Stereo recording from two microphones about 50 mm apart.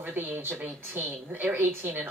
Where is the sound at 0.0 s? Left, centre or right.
Right.